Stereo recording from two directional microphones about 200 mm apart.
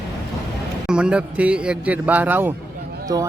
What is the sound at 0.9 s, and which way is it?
A man's voice, 5° right (ahead or behind).